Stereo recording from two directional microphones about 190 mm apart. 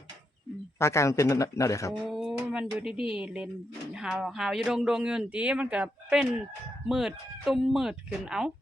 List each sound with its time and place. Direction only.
0.8 s speech: 15° left (ahead or behind)
2.0 s a sound: centre (ahead or behind)
2.4 s speech: 5° right (ahead or behind)